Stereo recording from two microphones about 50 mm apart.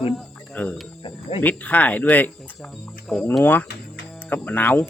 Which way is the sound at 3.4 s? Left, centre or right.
Left.